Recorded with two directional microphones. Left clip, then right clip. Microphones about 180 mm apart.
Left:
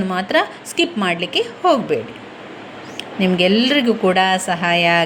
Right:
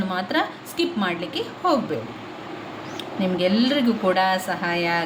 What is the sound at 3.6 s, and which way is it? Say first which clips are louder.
Speech: left 5 dB; 25° left (ahead or behind).